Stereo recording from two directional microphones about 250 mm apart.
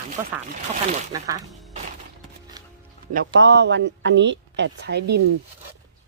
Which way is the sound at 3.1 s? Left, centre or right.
Right.